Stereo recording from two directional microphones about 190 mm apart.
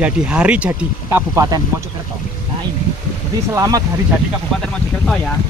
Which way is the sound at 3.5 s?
20° right (ahead or behind).